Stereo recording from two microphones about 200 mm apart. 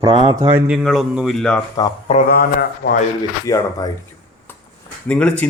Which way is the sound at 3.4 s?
15° left (ahead or behind).